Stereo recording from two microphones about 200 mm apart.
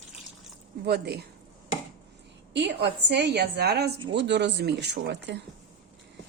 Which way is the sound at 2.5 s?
60° right (ahead or behind).